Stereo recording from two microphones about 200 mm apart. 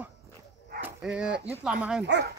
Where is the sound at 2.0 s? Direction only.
60° right (ahead or behind).